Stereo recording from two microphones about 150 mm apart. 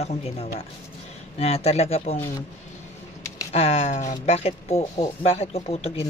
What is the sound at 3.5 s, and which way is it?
Speech, 45° left (ahead or behind).